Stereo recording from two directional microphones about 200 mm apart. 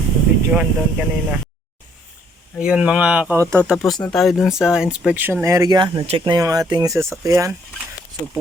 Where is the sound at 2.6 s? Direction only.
5° right (ahead or behind).